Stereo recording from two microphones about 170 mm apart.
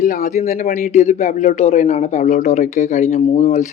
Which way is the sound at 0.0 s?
50° left (ahead or behind).